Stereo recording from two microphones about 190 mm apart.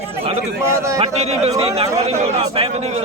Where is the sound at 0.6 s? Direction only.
15° right (ahead or behind).